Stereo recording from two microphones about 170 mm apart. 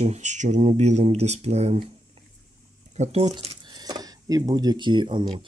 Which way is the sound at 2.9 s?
40° right (ahead or behind).